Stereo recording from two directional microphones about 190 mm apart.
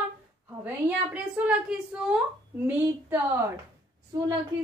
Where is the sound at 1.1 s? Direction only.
5° right (ahead or behind).